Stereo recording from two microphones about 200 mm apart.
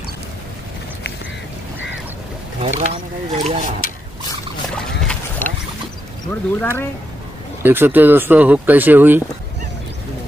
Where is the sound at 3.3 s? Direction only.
35° right (ahead or behind).